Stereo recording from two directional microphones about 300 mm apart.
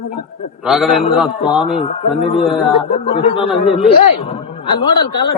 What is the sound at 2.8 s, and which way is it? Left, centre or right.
Speech, centre.